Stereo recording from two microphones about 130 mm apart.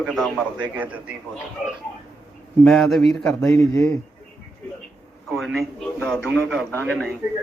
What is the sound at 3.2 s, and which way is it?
Speech, 20° left (ahead or behind).